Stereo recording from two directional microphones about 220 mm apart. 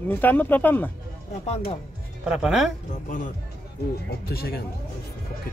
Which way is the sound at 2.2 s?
5° right (ahead or behind).